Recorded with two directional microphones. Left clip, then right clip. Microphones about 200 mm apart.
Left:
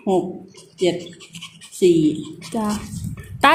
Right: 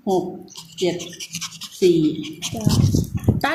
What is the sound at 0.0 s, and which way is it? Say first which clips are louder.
Speech: left 1 dB; 20° left (ahead or behind).